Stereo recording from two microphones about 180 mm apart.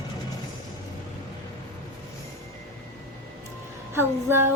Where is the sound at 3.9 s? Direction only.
10° right (ahead or behind).